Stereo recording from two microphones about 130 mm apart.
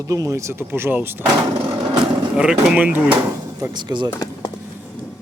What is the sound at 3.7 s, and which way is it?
Speech, 35° right (ahead or behind).